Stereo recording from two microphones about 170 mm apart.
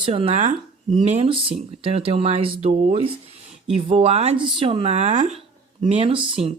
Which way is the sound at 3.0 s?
30° right (ahead or behind).